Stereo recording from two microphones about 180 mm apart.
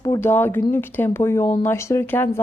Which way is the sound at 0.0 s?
15° left (ahead or behind).